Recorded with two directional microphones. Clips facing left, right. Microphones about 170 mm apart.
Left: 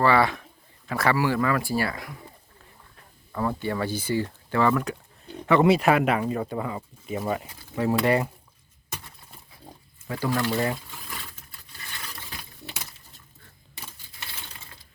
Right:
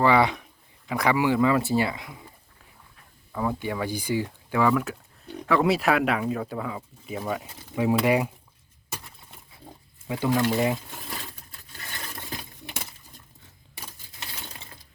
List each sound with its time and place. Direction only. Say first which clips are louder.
0.0 s speech: right 1 dB; 15° right (ahead or behind)
3.3 s speech: left 1 dB; 10° right (ahead or behind)
7.8 s speech: right 1 dB; 10° right (ahead or behind)
10.1 s speech: right 2 dB; 20° right (ahead or behind)